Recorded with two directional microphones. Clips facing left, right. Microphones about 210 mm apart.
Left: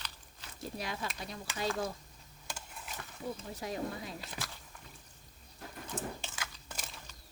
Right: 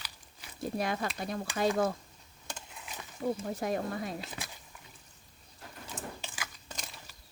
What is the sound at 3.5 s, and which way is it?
Speech, 55° right (ahead or behind).